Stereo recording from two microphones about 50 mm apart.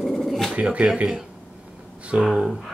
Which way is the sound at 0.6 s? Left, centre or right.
Right.